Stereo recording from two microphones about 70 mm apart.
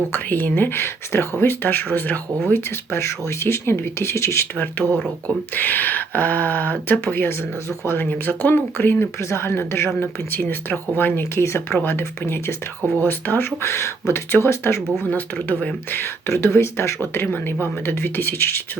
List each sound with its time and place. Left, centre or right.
0.1 s speech: left
5.5 s speech: left
15.1 s speech: left